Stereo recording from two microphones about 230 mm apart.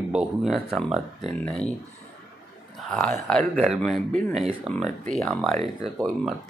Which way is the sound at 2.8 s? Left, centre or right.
Centre.